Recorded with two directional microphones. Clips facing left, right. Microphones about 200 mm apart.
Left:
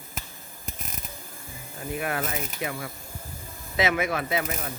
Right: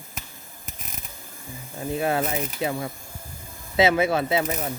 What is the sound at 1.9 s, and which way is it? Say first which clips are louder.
Speech: right 5 dB; 25° right (ahead or behind).